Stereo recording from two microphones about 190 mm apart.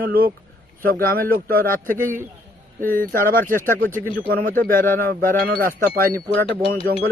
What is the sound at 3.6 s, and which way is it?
Speech, 10° left (ahead or behind).